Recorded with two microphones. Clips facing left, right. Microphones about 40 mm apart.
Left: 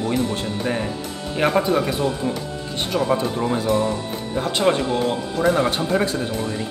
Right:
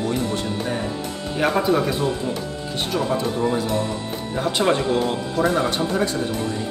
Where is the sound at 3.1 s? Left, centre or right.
Centre.